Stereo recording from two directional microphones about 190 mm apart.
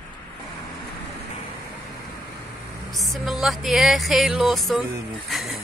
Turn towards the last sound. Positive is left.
turn(degrees=0)  # may be behind; listen again after turning